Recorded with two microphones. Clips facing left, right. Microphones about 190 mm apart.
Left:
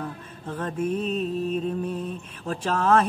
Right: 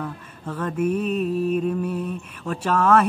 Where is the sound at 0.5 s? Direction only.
30° left (ahead or behind).